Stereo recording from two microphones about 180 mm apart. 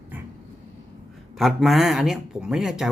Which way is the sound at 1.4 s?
Centre (ahead or behind).